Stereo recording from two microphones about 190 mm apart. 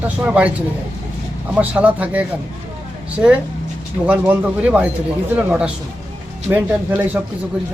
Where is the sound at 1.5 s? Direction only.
5° right (ahead or behind).